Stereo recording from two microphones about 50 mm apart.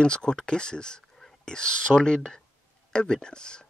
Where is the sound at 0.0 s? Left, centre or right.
Centre.